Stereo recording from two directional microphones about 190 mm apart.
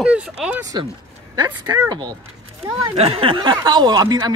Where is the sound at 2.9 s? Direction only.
30° right (ahead or behind).